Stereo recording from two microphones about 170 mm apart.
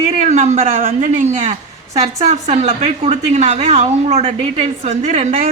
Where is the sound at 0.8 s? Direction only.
50° right (ahead or behind).